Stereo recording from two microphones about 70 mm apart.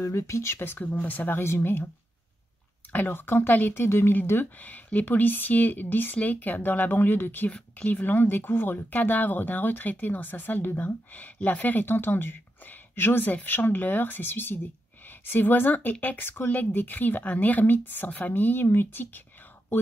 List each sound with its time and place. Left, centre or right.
0.0 s speech: left
2.9 s speech: left
4.6 s speech: left